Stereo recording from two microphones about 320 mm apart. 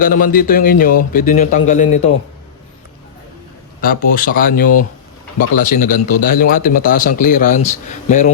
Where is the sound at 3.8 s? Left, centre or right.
Left.